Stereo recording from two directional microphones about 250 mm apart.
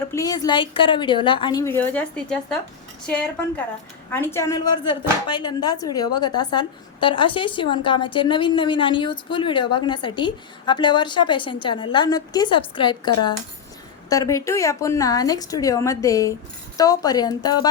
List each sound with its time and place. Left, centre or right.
0.1 s a woman's voice: centre
4.1 s a woman's voice: centre